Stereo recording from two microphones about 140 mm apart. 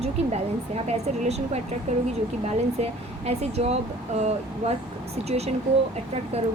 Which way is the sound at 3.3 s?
50° right (ahead or behind).